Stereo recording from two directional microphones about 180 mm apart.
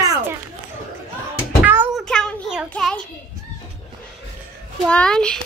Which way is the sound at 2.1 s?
5° left (ahead or behind).